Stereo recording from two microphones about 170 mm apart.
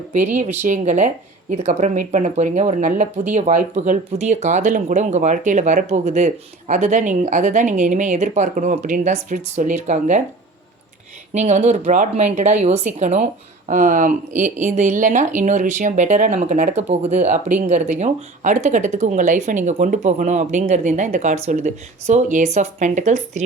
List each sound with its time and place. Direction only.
0.1 s speech: 45° right (ahead or behind)
11.3 s speech: 45° right (ahead or behind)